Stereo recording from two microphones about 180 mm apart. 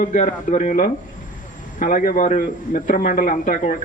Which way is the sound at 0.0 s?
45° left (ahead or behind).